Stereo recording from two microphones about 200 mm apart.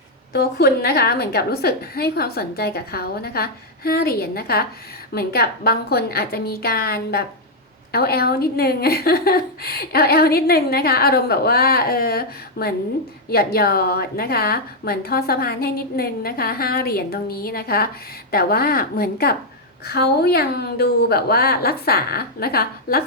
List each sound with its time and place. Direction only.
0.3 s a woman's voice: 50° left (ahead or behind)